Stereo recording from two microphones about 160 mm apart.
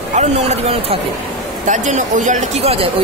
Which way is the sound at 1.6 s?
50° right (ahead or behind).